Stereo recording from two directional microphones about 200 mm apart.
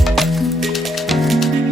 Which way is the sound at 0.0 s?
Centre (ahead or behind).